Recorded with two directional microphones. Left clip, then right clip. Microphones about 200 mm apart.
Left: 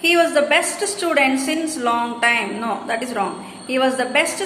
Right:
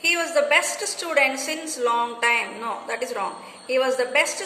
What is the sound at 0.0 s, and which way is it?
A woman's voice, 15° right (ahead or behind).